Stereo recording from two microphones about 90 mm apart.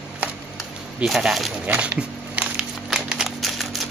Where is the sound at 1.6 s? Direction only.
15° right (ahead or behind); by 3.8 s centre (ahead or behind).